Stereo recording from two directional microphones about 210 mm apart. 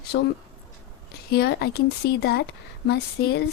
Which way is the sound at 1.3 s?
50° left (ahead or behind).